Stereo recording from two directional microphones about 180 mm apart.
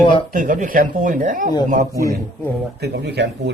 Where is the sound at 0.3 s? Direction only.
50° right (ahead or behind).